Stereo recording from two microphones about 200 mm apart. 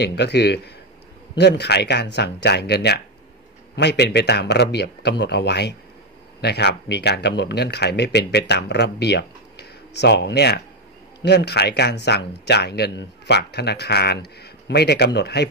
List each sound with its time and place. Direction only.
0.0 s speech: 55° left (ahead or behind)